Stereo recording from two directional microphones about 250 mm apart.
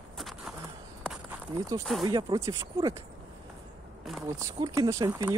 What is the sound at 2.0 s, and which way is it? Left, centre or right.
Speech, centre.